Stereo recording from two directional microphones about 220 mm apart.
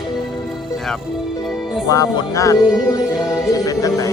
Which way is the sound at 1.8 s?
15° left (ahead or behind).